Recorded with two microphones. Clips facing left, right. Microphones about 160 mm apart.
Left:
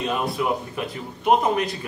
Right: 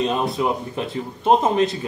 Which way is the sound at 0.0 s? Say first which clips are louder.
Right 3 dB; 25° right (ahead or behind).